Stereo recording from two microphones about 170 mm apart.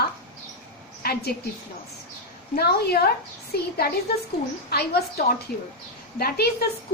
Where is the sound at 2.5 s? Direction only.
70° left (ahead or behind).